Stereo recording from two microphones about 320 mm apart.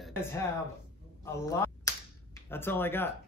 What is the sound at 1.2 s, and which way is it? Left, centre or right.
Finger snapping, centre.